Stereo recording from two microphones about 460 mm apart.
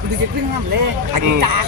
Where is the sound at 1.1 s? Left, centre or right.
Right.